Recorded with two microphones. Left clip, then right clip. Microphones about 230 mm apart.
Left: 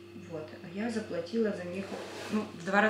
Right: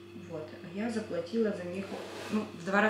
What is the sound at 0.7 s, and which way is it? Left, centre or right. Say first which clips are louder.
Speech: even; centre.